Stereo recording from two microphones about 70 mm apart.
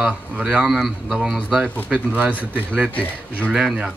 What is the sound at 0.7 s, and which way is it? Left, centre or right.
Speech, centre.